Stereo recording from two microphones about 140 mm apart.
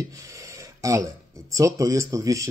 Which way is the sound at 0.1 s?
25° right (ahead or behind).